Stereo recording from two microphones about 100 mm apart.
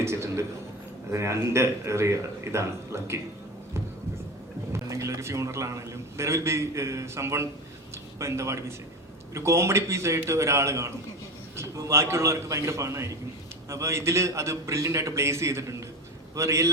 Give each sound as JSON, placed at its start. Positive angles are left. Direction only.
{"t": 0.0, "sound": "a sound", "side_deg": -30}
{"t": 1.1, "sound": "a man's voice", "side_deg": -30}
{"t": 4.7, "sound": "a man's voice", "side_deg": -30}